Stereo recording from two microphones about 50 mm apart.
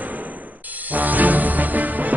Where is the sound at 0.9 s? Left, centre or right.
Right.